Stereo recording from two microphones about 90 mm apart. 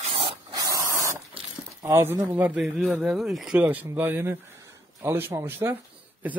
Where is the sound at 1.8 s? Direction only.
30° right (ahead or behind).